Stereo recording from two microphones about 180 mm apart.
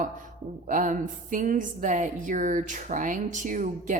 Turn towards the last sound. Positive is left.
turn(degrees=-45)  # may be behind; listen again after turning